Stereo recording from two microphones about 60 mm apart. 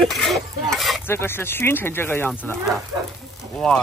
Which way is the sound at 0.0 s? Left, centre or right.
Centre.